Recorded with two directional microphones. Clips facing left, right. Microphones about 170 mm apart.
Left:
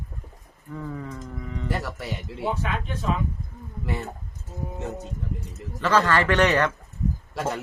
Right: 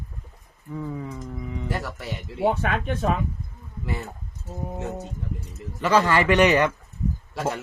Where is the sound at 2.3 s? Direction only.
60° right (ahead or behind).